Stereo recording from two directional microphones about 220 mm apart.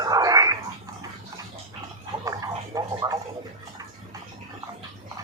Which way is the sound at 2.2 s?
15° right (ahead or behind).